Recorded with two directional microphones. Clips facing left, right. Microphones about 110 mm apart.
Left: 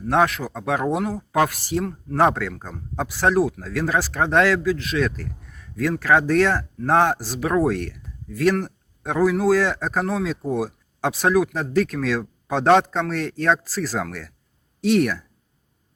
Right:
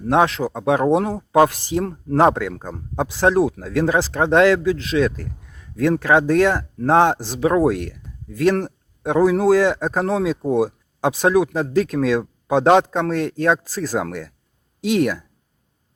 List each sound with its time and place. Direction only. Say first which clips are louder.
0.1 s speech: right 3 dB; 20° right (ahead or behind)
0.9 s speech: right 5 dB; 30° right (ahead or behind)
1.8 s speech: right 3 dB; 35° right (ahead or behind)
2.1 s a man's voice: right 3 dB; 20° right (ahead or behind)
8.6 s a sound: right 5 dB; 20° right (ahead or behind)
9.5 s a man's voice: right 4 dB; 15° right (ahead or behind)